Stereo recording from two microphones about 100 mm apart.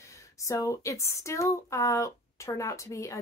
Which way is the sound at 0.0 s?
30° left (ahead or behind).